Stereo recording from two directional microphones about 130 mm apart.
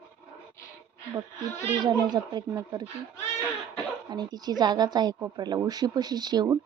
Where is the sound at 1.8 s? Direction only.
35° right (ahead or behind).